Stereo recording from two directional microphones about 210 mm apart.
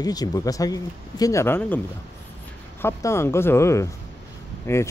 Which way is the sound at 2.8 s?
15° left (ahead or behind).